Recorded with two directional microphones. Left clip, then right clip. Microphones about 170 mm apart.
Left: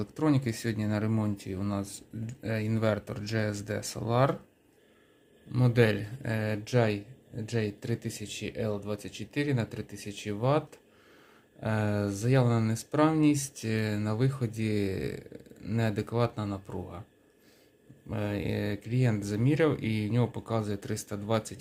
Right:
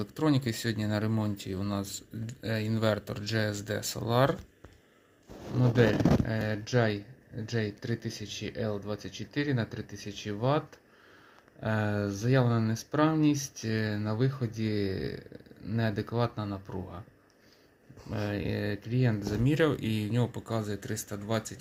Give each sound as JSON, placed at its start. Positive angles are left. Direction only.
{"t": 0.0, "sound": "speech", "side_deg": 0}
{"t": 5.5, "sound": "speech", "side_deg": 0}
{"t": 11.6, "sound": "speech", "side_deg": 5}
{"t": 18.1, "sound": "speech", "side_deg": 5}